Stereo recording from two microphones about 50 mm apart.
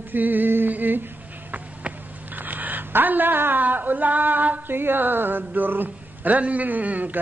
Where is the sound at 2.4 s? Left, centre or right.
Right.